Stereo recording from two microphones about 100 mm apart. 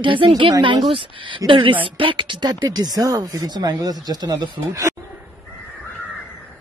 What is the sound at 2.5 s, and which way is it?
Speech, 40° right (ahead or behind).